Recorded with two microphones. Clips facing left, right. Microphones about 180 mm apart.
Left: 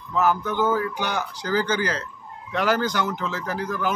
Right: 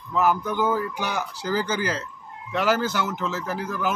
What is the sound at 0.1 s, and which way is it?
A man's voice, 10° right (ahead or behind).